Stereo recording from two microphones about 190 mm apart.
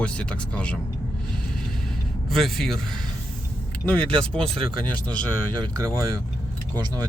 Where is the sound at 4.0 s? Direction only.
25° right (ahead or behind).